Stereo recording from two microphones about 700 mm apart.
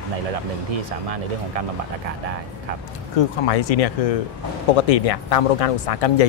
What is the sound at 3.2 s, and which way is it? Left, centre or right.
Speech, left.